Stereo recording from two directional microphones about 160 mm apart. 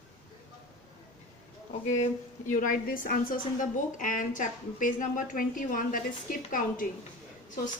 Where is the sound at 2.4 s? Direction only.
55° left (ahead or behind).